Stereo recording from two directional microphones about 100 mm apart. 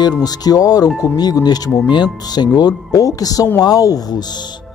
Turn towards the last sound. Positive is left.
turn(degrees=40)  # may be behind; listen again after turning